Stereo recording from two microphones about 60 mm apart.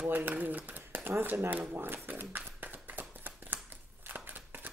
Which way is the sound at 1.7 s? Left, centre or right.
Right.